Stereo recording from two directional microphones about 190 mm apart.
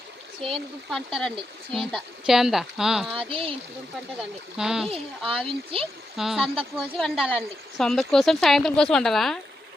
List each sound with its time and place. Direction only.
0.4 s speech: centre (ahead or behind)
3.2 s speech: 30° right (ahead or behind)
4.5 s speech: 5° right (ahead or behind)
4.9 s speech: 30° right (ahead or behind)
6.1 s speech: centre (ahead or behind)